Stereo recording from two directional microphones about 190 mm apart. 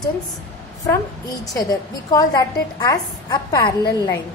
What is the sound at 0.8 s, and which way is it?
A woman's voice, 15° left (ahead or behind).